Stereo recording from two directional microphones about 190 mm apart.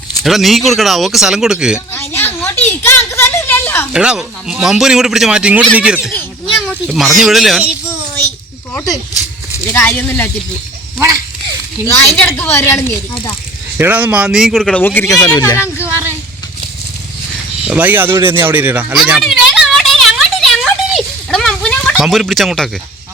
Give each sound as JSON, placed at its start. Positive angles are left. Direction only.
{"t": 0.2, "sound": "speech", "side_deg": 0}
{"t": 1.9, "sound": "a sound", "side_deg": 10}
{"t": 3.9, "sound": "speech", "side_deg": -5}
{"t": 6.0, "sound": "children playing", "side_deg": 10}
{"t": 6.8, "sound": "speech", "side_deg": 0}
{"t": 9.7, "sound": "a woman's voice", "side_deg": 10}
{"t": 10.9, "sound": "speech", "side_deg": -15}
{"t": 11.9, "sound": "a woman's voice", "side_deg": 10}
{"t": 13.7, "sound": "speech", "side_deg": -10}
{"t": 15.6, "sound": "a sound", "side_deg": -10}
{"t": 17.7, "sound": "speech", "side_deg": -10}
{"t": 18.3, "sound": "a sound", "side_deg": -10}